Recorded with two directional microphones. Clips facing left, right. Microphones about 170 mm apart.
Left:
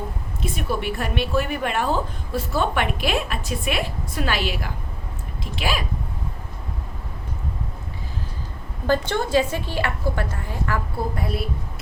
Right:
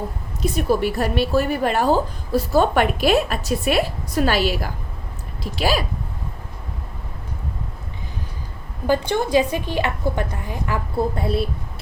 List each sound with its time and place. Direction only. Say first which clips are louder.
0.4 s a woman's voice: right 6 dB; 40° right (ahead or behind)
8.9 s a woman's voice: right 2 dB; 15° right (ahead or behind)